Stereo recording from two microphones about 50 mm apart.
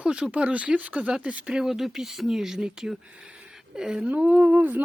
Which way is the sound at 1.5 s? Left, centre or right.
Centre.